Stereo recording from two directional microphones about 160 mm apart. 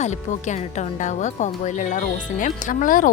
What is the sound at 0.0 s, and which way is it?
Speech, 45° left (ahead or behind).